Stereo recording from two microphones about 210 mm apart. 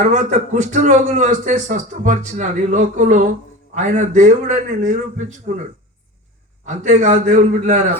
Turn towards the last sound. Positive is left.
turn(degrees=-35)  # may be behind; listen again after turning